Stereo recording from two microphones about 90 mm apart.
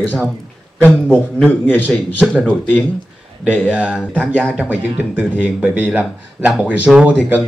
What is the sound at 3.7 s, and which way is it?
A man's voice, 10° right (ahead or behind).